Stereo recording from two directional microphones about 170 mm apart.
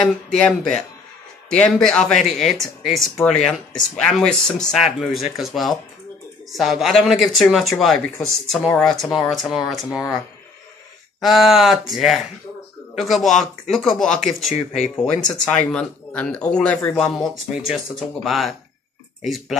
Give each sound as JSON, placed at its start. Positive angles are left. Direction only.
{"t": 0.0, "sound": "speech", "side_deg": 5}
{"t": 11.1, "sound": "speech", "side_deg": 0}
{"t": 14.5, "sound": "speech", "side_deg": 40}
{"t": 15.2, "sound": "speech", "side_deg": 5}